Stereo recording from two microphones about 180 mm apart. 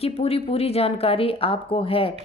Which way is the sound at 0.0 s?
35° left (ahead or behind).